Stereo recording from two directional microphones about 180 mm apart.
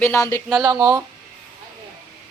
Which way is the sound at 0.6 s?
20° right (ahead or behind).